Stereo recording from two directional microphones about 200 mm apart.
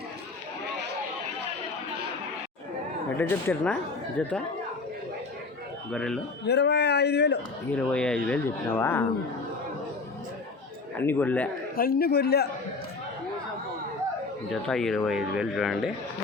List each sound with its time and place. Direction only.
3.2 s speech: 10° left (ahead or behind)
5.9 s speech: 5° left (ahead or behind)
6.4 s a man's voice: 55° left (ahead or behind)
7.8 s speech: 5° left (ahead or behind)
10.9 s speech: 10° left (ahead or behind)
11.8 s a man's voice: 45° left (ahead or behind)
14.5 s speech: centre (ahead or behind)